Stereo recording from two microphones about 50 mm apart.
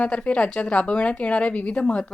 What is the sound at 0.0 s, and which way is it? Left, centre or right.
Speech, left.